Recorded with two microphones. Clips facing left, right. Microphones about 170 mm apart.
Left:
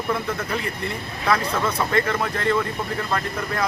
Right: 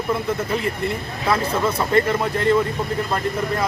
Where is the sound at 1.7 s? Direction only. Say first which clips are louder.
Right 5 dB; 30° right (ahead or behind).